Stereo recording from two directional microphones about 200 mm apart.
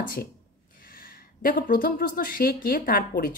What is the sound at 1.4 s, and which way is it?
Speech, 45° left (ahead or behind).